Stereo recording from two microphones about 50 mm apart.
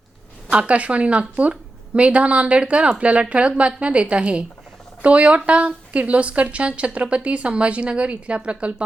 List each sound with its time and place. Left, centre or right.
0.7 s a woman's voice: right